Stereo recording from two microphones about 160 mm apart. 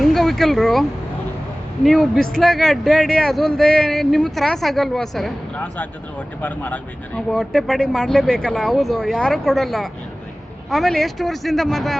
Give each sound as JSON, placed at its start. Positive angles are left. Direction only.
{"t": 0.0, "sound": "a woman's voice", "side_deg": 0}